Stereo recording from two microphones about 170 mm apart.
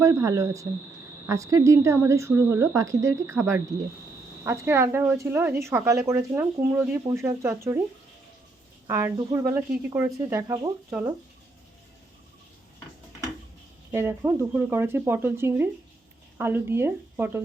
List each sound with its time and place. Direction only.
0.0 s speech: 15° right (ahead or behind)
8.9 s speech: 15° right (ahead or behind)
13.9 s speech: 15° right (ahead or behind)